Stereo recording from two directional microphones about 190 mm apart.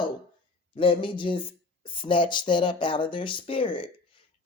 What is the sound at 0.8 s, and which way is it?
Speech, 25° left (ahead or behind).